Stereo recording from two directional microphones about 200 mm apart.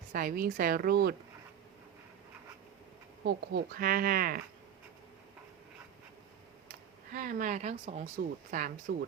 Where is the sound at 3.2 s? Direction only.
55° right (ahead or behind).